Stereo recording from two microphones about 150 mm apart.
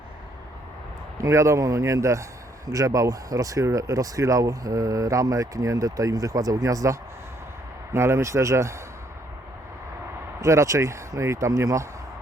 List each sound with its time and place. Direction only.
1.2 s speech: 20° right (ahead or behind)
10.4 s speech: 20° right (ahead or behind)